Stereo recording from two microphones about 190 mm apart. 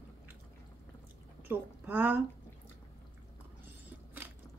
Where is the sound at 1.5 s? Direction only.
10° right (ahead or behind).